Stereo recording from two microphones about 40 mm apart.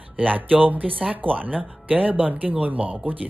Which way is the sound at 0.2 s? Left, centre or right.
Right.